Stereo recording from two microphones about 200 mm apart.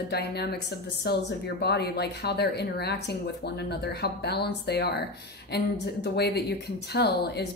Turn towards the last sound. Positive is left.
turn(degrees=55)  # may be behind; listen again after turning